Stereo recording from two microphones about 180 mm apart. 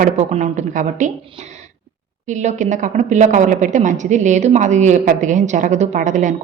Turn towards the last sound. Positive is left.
turn(degrees=-45)  # may be behind; listen again after turning